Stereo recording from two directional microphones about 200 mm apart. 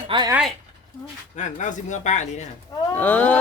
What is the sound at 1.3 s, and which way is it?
Speech, 35° left (ahead or behind).